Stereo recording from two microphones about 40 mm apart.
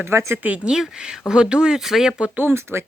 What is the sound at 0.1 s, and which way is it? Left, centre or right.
Speech, right.